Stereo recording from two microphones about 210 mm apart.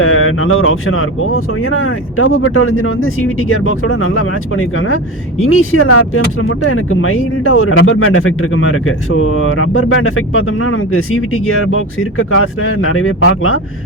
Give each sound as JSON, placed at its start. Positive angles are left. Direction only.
{"t": 0.0, "sound": "speech", "side_deg": 85}